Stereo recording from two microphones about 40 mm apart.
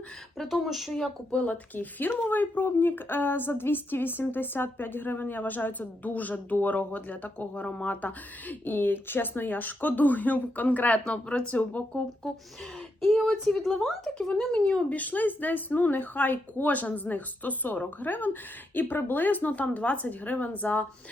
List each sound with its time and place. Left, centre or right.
0.4 s speech: centre
1.4 s speech: left
7.9 s speech: left
13.1 s speech: centre
14.3 s speech: centre
14.8 s speech: left